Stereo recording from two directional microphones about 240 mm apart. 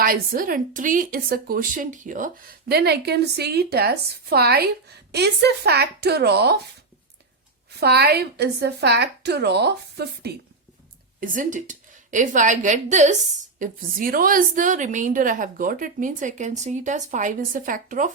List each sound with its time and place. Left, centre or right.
0.0 s speech: right
7.8 s a woman's voice: right
11.2 s speech: right